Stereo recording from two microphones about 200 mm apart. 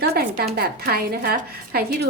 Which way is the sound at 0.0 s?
55° right (ahead or behind).